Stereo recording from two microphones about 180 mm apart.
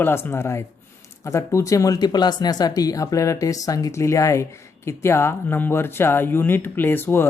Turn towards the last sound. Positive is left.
turn(degrees=10)  # may be behind; listen again after turning